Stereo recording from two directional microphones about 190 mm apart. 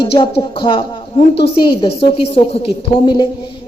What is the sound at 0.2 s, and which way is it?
A woman's voice, 25° left (ahead or behind).